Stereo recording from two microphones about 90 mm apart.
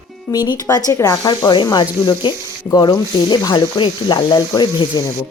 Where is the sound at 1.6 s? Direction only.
50° left (ahead or behind).